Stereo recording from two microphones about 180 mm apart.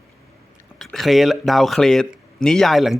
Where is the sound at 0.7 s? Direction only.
Centre (ahead or behind).